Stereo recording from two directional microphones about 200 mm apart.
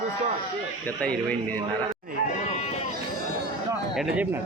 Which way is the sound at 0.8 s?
5° left (ahead or behind).